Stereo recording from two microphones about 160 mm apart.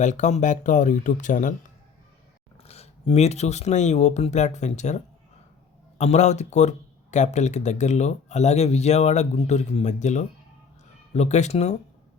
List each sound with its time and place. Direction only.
0.0 s speech: 50° left (ahead or behind)
2.6 s speech: 40° left (ahead or behind)